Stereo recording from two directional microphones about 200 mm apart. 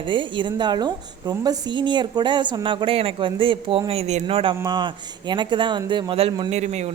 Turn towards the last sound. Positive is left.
turn(degrees=-35)  # may be behind; listen again after turning